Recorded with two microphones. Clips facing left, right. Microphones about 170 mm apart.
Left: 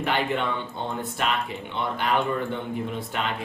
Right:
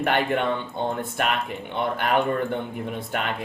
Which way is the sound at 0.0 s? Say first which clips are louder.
Right 3 dB; 55° right (ahead or behind).